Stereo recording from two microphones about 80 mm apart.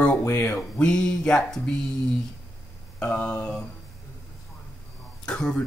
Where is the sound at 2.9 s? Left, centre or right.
Centre.